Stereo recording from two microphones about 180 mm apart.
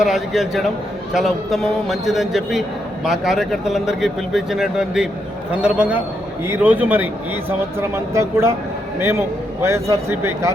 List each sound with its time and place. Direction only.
0.0 s a man's voice: centre (ahead or behind)